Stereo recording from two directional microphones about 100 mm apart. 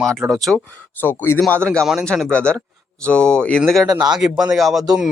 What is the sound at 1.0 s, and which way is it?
Speech, 20° left (ahead or behind).